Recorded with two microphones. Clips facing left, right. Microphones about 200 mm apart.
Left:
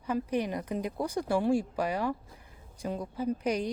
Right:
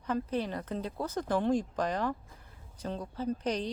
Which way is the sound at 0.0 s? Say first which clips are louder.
Left 2 dB; 10° left (ahead or behind).